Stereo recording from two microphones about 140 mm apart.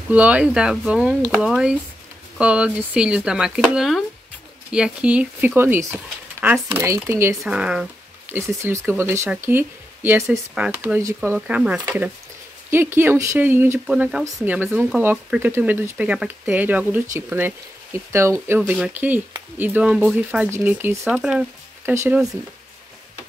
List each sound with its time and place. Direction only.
0.1 s speech: 10° right (ahead or behind)
7.4 s speech: 5° right (ahead or behind)
8.3 s speech: 20° right (ahead or behind)
21.1 s speech: 5° right (ahead or behind)
21.9 s speech: 15° right (ahead or behind)